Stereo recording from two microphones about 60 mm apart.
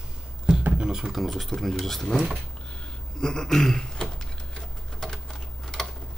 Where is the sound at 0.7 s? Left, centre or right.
Centre.